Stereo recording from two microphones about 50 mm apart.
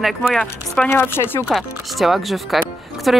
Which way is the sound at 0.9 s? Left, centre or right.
Left.